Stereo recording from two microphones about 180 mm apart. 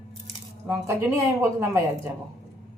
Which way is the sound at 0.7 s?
15° right (ahead or behind).